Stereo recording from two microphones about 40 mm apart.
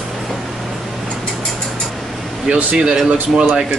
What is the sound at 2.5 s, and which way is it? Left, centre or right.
Speech, right.